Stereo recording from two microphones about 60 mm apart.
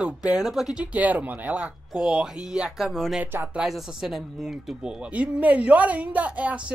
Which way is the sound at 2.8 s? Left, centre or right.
Centre.